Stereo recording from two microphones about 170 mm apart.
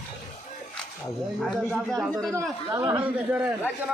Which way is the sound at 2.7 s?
20° right (ahead or behind).